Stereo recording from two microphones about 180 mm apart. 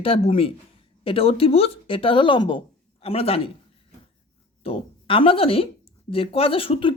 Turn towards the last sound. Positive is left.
turn(degrees=30)  # may be behind; listen again after turning